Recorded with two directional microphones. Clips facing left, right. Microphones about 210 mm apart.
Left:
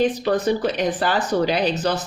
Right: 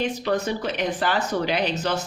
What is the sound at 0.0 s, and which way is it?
Speech, 35° left (ahead or behind).